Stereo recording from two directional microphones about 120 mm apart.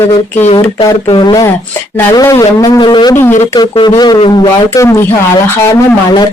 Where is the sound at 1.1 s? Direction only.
35° left (ahead or behind).